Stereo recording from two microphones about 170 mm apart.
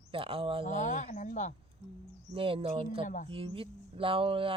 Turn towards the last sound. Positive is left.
turn(degrees=-30)  # may be behind; listen again after turning